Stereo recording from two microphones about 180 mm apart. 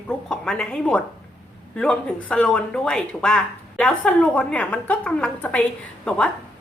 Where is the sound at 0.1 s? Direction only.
5° left (ahead or behind).